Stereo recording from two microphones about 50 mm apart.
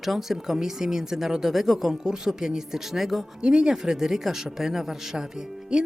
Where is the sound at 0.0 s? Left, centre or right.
Centre.